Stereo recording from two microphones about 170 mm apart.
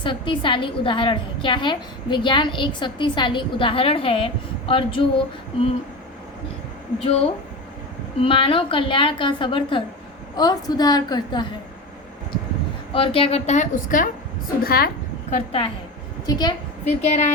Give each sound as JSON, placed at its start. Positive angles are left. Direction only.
{"t": 0.0, "sound": "a woman's voice", "side_deg": 30}
{"t": 7.0, "sound": "a woman's voice", "side_deg": 35}
{"t": 12.9, "sound": "a woman's voice", "side_deg": 35}
{"t": 14.6, "sound": "a woman's voice", "side_deg": 65}
{"t": 15.3, "sound": "a woman's voice", "side_deg": 35}
{"t": 16.2, "sound": "a woman's voice", "side_deg": 25}
{"t": 16.8, "sound": "a woman's voice", "side_deg": 40}